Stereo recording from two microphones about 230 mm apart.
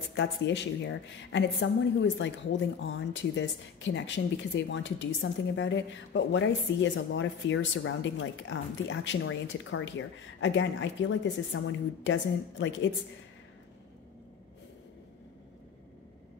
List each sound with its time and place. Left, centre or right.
0.1 s speech: left